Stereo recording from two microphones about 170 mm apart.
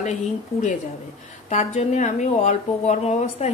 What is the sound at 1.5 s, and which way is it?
Speech, 40° left (ahead or behind).